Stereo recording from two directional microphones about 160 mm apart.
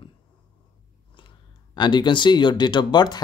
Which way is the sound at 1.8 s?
30° left (ahead or behind).